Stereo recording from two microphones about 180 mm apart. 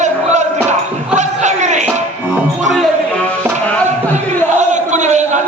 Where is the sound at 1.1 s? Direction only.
40° right (ahead or behind).